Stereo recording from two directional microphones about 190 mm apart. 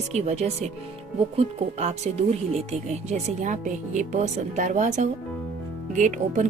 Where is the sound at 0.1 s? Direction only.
35° right (ahead or behind).